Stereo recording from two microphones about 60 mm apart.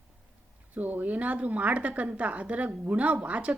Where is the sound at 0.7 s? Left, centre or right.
Right.